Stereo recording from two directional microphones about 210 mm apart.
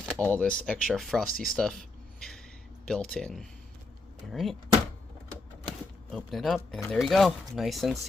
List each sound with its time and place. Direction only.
0.0 s speech: 5° left (ahead or behind)
2.8 s speech: 5° left (ahead or behind)
6.1 s speech: centre (ahead or behind)